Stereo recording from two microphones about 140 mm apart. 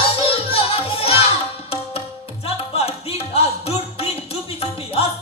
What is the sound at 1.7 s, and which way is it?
Tabla, 45° left (ahead or behind).